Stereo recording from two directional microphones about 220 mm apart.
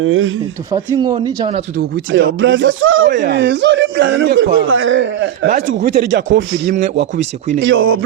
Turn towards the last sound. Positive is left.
turn(degrees=-65)  # may be behind; listen again after turning